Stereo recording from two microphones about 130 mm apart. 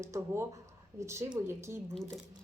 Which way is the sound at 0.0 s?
25° right (ahead or behind).